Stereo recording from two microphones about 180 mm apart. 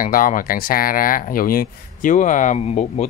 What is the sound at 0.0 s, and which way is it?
Speech, 50° left (ahead or behind).